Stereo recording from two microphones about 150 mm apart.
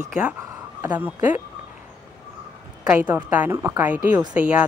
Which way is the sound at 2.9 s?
10° right (ahead or behind).